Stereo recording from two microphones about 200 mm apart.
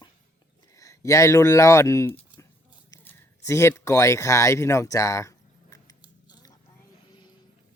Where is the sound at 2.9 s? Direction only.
10° left (ahead or behind).